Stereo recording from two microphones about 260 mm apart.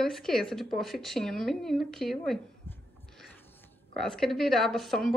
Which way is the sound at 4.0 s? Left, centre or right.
Centre.